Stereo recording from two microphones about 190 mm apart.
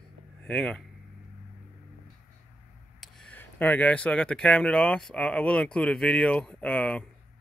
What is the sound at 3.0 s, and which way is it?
A man's voice, 5° left (ahead or behind).